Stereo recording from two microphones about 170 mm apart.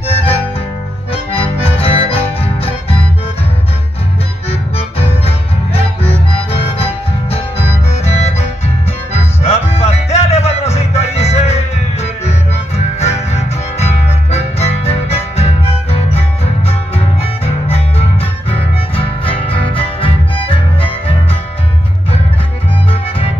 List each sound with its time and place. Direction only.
0.0 s music: 35° left (ahead or behind)
4.5 s music: 35° left (ahead or behind)
22.8 s music: 35° left (ahead or behind)